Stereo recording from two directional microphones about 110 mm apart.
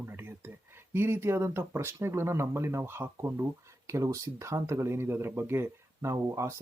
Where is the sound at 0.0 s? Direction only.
20° right (ahead or behind).